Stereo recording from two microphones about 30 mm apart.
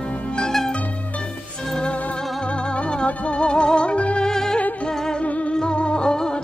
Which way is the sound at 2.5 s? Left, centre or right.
Left.